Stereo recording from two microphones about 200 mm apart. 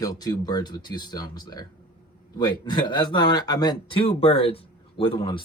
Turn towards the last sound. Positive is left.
turn(degrees=25)  # may be behind; listen again after turning